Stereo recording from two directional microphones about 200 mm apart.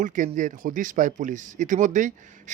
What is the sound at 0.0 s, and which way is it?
Speech, 40° right (ahead or behind).